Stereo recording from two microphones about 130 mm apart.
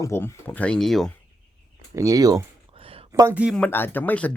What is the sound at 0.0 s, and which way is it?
Speech, 20° left (ahead or behind).